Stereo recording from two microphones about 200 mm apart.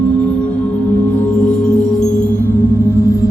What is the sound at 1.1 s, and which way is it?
Singing bowl, 5° left (ahead or behind).